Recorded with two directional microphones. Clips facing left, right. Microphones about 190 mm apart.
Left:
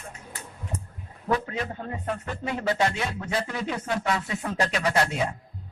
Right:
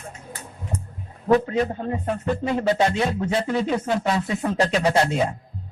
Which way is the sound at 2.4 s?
30° right (ahead or behind).